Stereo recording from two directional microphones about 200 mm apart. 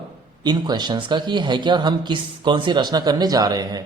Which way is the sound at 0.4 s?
20° right (ahead or behind).